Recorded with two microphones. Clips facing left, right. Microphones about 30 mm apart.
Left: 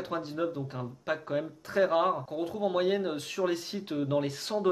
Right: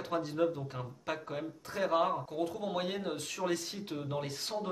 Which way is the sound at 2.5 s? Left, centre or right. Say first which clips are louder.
Left 7 dB; left.